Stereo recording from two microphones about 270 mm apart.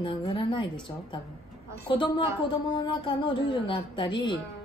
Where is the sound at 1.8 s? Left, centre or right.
Centre.